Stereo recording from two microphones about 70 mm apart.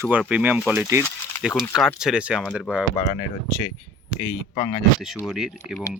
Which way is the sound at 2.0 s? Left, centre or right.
Centre.